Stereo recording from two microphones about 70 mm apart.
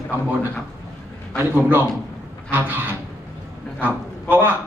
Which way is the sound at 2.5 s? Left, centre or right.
Right.